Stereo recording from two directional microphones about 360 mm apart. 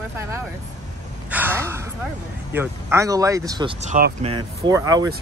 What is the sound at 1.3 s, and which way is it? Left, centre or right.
Gasp, centre.